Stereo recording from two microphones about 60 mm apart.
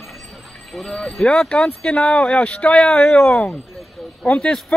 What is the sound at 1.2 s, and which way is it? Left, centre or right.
Speech, centre.